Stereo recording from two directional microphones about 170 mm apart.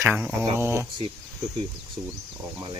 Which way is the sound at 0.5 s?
15° right (ahead or behind).